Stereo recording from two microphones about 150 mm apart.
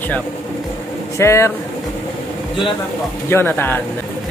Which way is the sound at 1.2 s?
20° left (ahead or behind).